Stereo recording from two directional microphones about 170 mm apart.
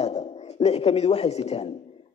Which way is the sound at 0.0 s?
40° left (ahead or behind).